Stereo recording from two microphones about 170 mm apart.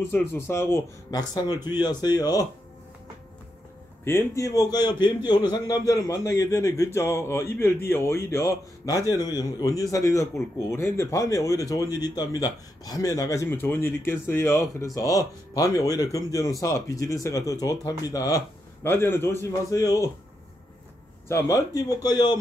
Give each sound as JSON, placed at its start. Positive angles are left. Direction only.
{"t": 0.1, "sound": "a man's voice", "side_deg": 10}
{"t": 4.0, "sound": "a man's voice", "side_deg": 15}
{"t": 21.3, "sound": "a man's voice", "side_deg": 15}